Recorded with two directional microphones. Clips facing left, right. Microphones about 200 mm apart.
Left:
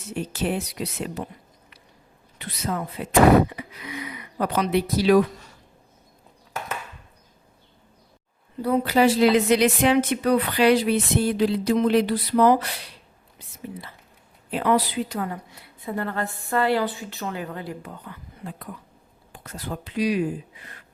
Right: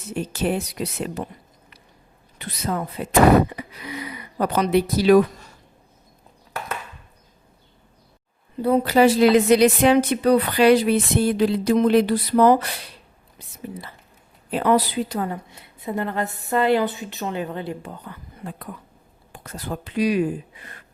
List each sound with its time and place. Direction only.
0.4 s a sound: 45° right (ahead or behind)
2.4 s speech: 40° right (ahead or behind)
8.6 s speech: 35° right (ahead or behind)
11.3 s a sound: 50° right (ahead or behind)
14.5 s a woman's voice: 40° right (ahead or behind)
19.3 s speech: 55° right (ahead or behind)